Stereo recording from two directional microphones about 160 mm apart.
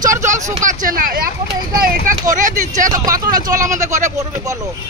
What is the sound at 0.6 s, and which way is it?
Speech, 55° right (ahead or behind).